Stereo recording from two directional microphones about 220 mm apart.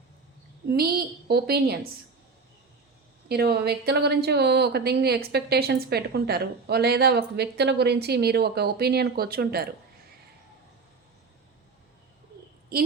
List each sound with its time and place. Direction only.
0.7 s a woman's voice: 45° right (ahead or behind)
3.2 s a woman's voice: 45° right (ahead or behind)
12.7 s a woman's voice: 45° right (ahead or behind)